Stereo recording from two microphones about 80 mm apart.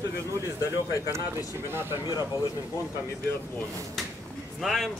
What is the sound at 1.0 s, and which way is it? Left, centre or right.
Speech, right.